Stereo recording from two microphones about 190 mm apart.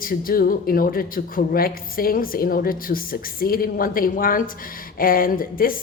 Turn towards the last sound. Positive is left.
turn(degrees=50)  # may be behind; listen again after turning